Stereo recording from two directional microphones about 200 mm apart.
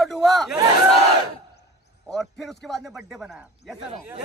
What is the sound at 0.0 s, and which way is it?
Crowd, centre (ahead or behind).